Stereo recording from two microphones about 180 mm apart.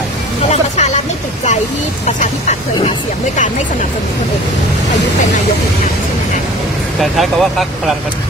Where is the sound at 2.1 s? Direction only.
40° left (ahead or behind).